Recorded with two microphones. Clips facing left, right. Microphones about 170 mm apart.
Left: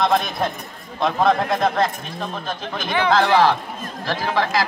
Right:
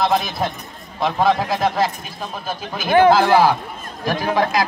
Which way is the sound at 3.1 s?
5° right (ahead or behind).